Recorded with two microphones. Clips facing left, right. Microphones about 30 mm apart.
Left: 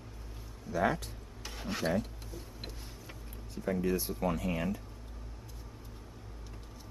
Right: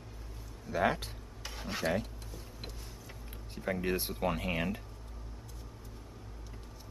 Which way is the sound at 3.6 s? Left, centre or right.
Right.